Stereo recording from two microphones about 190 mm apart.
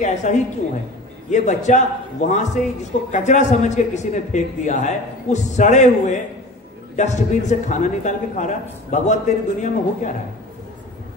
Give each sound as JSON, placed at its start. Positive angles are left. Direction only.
{"t": 0.0, "sound": "a man's voice", "side_deg": 40}